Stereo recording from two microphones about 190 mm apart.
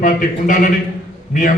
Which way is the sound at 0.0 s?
45° left (ahead or behind).